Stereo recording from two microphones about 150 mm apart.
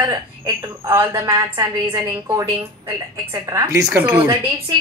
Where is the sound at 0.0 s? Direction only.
20° right (ahead or behind).